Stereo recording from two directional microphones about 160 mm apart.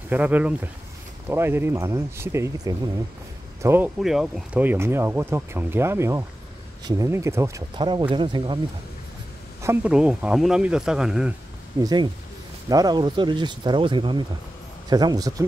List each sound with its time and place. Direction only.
0.1 s speech: 10° right (ahead or behind)
4.0 s speech: centre (ahead or behind); by 8.5 s 30° right (ahead or behind)
9.8 s speech: 5° right (ahead or behind)
11.8 s speech: 25° right (ahead or behind)